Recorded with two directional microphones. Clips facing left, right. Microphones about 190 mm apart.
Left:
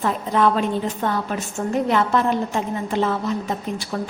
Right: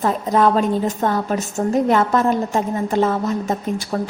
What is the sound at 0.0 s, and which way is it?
A woman's voice, 40° right (ahead or behind).